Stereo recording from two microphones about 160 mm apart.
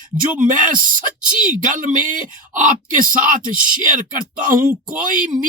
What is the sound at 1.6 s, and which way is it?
Speech, 55° right (ahead or behind).